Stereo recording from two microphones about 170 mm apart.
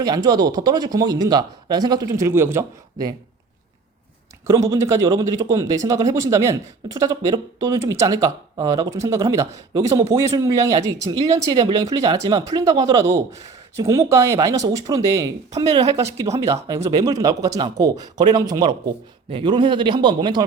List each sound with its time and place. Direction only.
0.0 s speech: 25° right (ahead or behind)
4.4 s speech: 20° right (ahead or behind)